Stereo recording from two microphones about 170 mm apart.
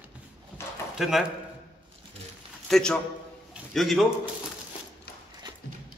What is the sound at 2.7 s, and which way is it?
A man's voice, 5° left (ahead or behind).